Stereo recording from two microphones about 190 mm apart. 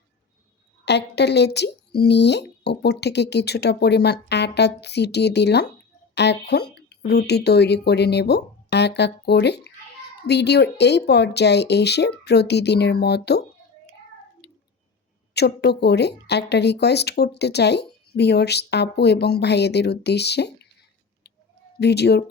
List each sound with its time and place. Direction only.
0.9 s speech: 65° left (ahead or behind)
14.4 s a sound: 60° left (ahead or behind)
15.3 s speech: 60° left (ahead or behind)
21.8 s speech: 60° left (ahead or behind)